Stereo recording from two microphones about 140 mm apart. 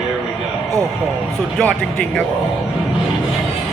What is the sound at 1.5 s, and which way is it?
Speech, 5° left (ahead or behind).